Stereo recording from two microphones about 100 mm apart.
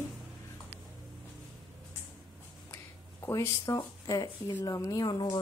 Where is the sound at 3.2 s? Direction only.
30° left (ahead or behind).